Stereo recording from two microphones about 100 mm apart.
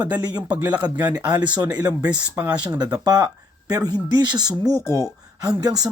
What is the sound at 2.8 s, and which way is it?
Speech, 40° right (ahead or behind).